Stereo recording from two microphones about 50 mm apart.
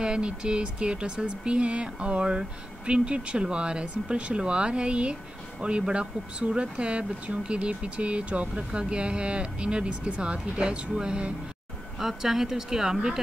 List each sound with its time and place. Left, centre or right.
0.0 s speech: centre
12.0 s speech: centre